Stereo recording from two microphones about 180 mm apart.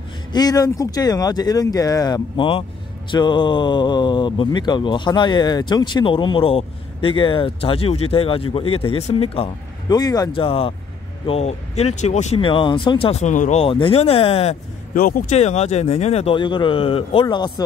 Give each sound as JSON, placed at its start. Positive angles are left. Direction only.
{"t": 0.3, "sound": "speech", "side_deg": 20}
{"t": 15.0, "sound": "speech", "side_deg": 50}